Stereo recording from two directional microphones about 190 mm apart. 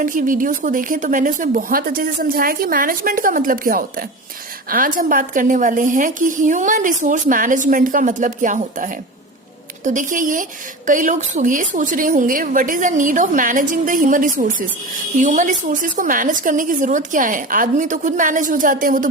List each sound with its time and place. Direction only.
0.0 s a woman's voice: 45° right (ahead or behind)